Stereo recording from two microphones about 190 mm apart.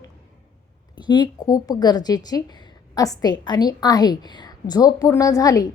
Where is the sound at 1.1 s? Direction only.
20° left (ahead or behind).